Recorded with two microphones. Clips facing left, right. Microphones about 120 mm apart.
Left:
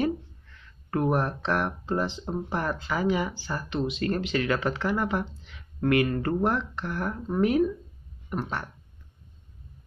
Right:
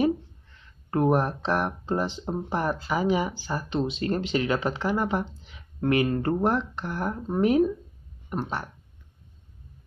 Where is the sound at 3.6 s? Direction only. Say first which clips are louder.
Even; 30° right (ahead or behind).